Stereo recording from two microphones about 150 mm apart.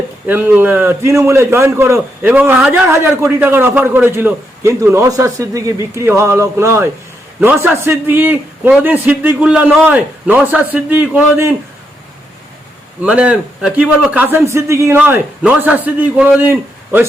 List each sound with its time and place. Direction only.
0.3 s a man's voice: 10° right (ahead or behind)
13.0 s a man's voice: 10° right (ahead or behind)